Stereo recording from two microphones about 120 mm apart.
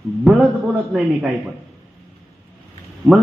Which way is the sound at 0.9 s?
Centre (ahead or behind).